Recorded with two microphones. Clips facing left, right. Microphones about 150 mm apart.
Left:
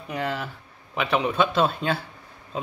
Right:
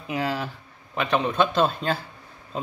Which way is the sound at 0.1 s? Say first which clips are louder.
Right 2 dB; 5° right (ahead or behind).